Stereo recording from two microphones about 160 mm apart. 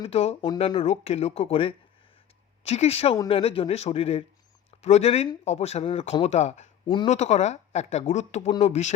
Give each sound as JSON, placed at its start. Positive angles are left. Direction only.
{"t": 0.0, "sound": "speech", "side_deg": 40}
{"t": 6.8, "sound": "speech", "side_deg": 30}
{"t": 7.1, "sound": "speech", "side_deg": 45}